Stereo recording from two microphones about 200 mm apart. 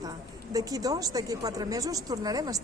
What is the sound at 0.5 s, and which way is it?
Speech, 20° right (ahead or behind).